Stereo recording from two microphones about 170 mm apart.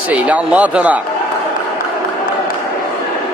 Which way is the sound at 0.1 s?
10° right (ahead or behind).